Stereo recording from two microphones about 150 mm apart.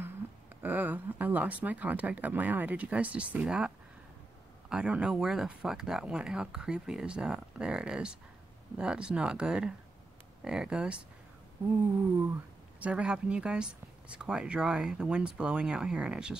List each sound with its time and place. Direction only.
0.6 s speech: 10° right (ahead or behind)
12.8 s speech: 5° right (ahead or behind)